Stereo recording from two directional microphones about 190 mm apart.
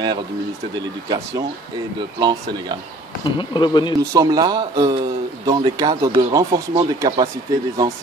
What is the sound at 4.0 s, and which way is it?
Speech, 20° right (ahead or behind).